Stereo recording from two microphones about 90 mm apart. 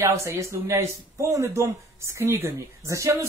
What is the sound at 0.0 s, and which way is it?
Speech, 35° right (ahead or behind).